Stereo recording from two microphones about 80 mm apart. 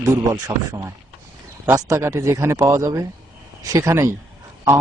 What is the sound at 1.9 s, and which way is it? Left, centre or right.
Speech, right.